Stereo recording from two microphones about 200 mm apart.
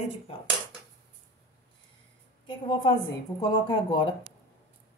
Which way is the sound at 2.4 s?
25° left (ahead or behind).